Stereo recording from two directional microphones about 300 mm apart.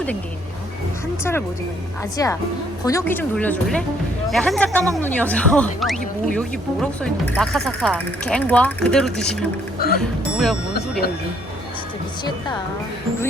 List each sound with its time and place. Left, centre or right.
1.2 s speech: centre
9.7 s music: left
10.0 s speech: centre